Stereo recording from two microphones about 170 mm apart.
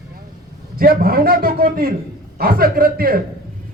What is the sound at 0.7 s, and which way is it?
A man's voice, 60° right (ahead or behind).